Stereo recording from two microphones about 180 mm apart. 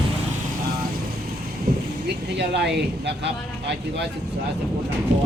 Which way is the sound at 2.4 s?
70° right (ahead or behind).